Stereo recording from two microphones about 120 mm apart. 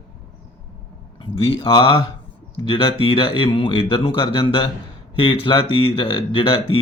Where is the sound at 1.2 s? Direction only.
45° left (ahead or behind).